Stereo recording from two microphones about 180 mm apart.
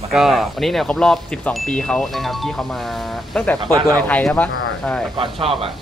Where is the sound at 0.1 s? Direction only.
Centre (ahead or behind).